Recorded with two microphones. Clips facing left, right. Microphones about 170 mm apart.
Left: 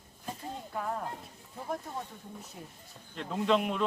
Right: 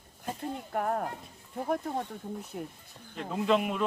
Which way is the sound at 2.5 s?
60° right (ahead or behind).